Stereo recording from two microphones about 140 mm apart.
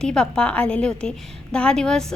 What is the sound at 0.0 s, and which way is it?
A woman's voice, 5° left (ahead or behind).